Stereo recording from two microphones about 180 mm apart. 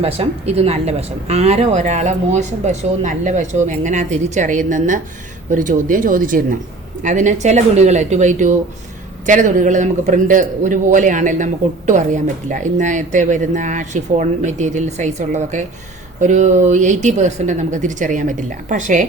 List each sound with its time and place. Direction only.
0.0 s a man's voice: 35° right (ahead or behind)